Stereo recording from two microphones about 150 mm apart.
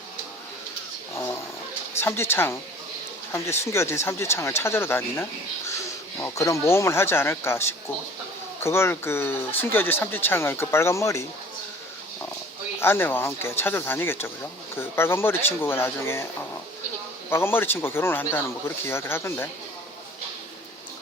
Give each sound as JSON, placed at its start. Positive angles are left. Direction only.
{"t": 2.0, "sound": "speech", "side_deg": 15}
{"t": 12.8, "sound": "speech", "side_deg": 15}